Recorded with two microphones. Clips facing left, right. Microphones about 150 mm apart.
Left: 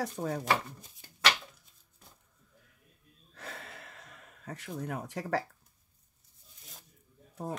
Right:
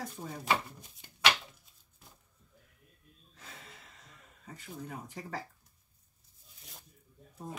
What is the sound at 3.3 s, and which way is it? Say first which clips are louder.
Gasp: left 7 dB; 70° left (ahead or behind).